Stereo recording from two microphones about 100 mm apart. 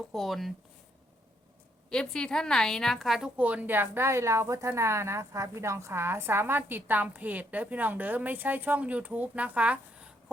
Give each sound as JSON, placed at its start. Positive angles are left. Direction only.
{"t": 0.1, "sound": "a woman's voice", "side_deg": 0}
{"t": 1.9, "sound": "a woman's voice", "side_deg": 5}
{"t": 3.3, "sound": "a woman's voice", "side_deg": -15}